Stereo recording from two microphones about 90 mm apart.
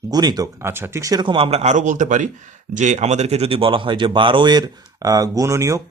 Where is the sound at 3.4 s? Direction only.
85° right; by 5.8 s 35° right (ahead or behind).